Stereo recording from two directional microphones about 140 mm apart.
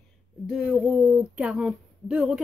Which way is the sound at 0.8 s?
20° right (ahead or behind).